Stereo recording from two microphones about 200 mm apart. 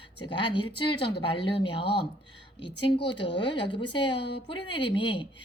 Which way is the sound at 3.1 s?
25° left (ahead or behind).